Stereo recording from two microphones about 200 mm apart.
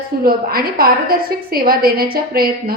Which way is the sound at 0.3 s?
45° right (ahead or behind).